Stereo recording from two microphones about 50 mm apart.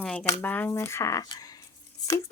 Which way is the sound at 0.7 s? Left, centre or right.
Left.